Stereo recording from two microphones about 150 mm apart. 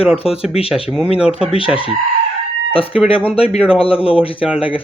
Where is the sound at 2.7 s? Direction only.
40° left (ahead or behind).